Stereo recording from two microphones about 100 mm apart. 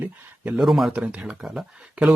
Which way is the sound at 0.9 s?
15° right (ahead or behind).